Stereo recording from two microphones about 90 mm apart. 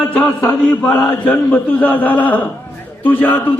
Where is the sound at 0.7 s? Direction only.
15° left (ahead or behind).